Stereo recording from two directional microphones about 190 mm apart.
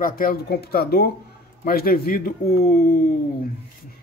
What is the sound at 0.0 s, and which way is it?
Speech, 50° left (ahead or behind).